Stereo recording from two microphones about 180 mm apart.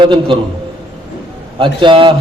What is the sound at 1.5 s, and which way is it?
Speech, 25° right (ahead or behind).